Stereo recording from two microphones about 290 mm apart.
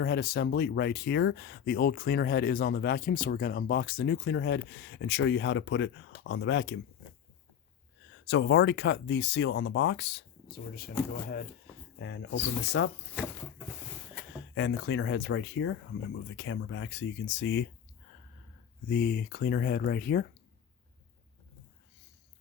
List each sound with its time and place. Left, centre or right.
0.0 s speech: left
8.1 s speech: left
11.9 s speech: left
14.5 s speech: left
18.9 s speech: left